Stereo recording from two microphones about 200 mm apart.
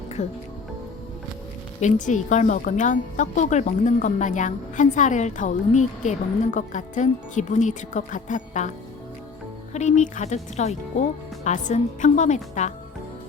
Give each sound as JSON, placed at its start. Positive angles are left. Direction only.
{"t": 0.2, "sound": "speech", "side_deg": 35}
{"t": 1.8, "sound": "speech", "side_deg": 40}
{"t": 9.7, "sound": "speech", "side_deg": 35}